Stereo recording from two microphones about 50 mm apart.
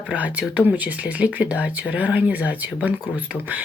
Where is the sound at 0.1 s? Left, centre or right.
Right.